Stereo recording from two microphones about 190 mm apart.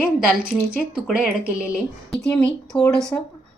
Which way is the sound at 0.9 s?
5° right (ahead or behind).